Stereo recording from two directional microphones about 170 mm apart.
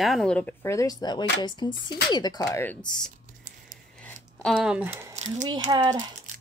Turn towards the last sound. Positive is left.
turn(degrees=-25)  # may be behind; listen again after turning